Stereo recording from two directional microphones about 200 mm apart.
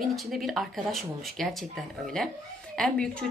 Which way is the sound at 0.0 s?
Centre (ahead or behind).